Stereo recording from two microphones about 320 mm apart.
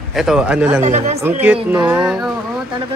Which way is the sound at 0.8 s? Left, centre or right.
Right.